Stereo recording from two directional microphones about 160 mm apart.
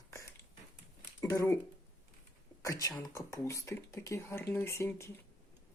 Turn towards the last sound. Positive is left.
turn(degrees=15)  # may be behind; listen again after turning